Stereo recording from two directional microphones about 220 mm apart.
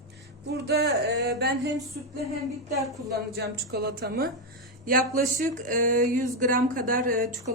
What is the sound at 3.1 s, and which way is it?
A woman's voice, 45° right (ahead or behind).